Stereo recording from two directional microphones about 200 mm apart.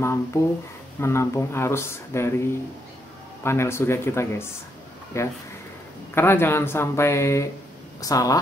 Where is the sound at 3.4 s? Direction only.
15° left (ahead or behind).